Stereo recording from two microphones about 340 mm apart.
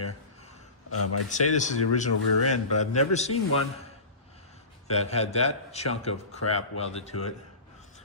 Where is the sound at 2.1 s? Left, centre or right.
Left.